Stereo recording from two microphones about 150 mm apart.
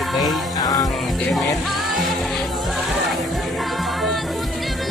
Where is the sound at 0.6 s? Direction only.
25° left (ahead or behind).